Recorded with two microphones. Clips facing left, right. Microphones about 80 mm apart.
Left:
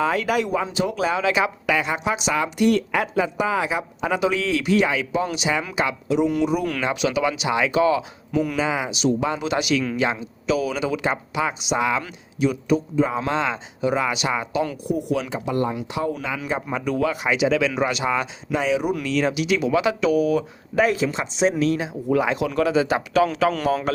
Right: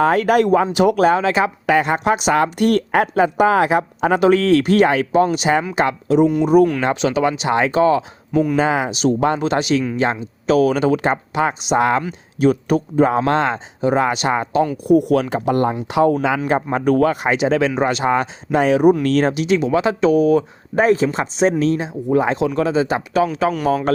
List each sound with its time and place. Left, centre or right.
0.0 s speech: right
8.3 s speech: right
8.5 s speech: right
9.4 s speech: right
14.8 s speech: right
15.9 s speech: right
16.7 s a man's voice: right; by 23.6 s centre